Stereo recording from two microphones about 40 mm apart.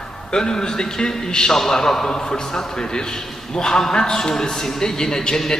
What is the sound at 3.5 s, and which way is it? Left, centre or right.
A man's voice, centre.